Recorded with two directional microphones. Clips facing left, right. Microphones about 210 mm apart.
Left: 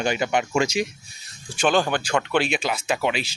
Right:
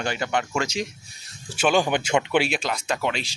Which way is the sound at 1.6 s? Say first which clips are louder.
Even; 10° right (ahead or behind).